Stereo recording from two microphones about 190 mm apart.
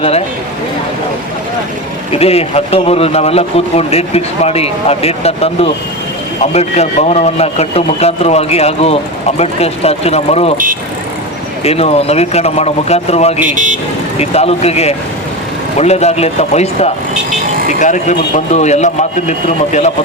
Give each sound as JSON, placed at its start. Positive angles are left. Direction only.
{"t": 2.1, "sound": "speech", "side_deg": 30}
{"t": 11.6, "sound": "speech", "side_deg": 30}
{"t": 13.5, "sound": "speech", "side_deg": -40}
{"t": 14.2, "sound": "speech", "side_deg": 35}